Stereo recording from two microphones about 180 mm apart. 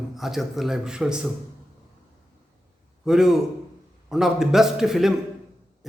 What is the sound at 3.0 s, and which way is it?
A man's voice, centre (ahead or behind).